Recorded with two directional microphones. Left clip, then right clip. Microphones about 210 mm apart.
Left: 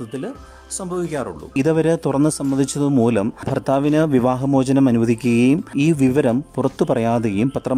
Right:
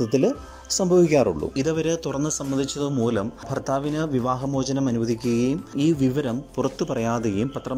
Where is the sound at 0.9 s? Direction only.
Centre (ahead or behind).